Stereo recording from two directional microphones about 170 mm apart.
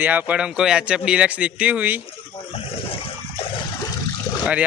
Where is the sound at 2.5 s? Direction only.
35° left (ahead or behind).